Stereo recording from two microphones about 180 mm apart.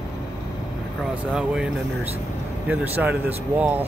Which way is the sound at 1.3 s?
5° right (ahead or behind).